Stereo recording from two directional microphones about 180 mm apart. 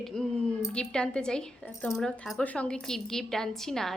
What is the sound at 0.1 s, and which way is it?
A woman's voice, 5° left (ahead or behind).